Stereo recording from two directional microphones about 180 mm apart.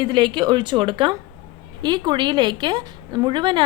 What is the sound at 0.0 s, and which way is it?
A woman's voice, 25° right (ahead or behind).